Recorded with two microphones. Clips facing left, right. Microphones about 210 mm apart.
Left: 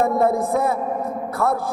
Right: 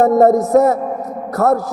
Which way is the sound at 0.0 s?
40° right (ahead or behind).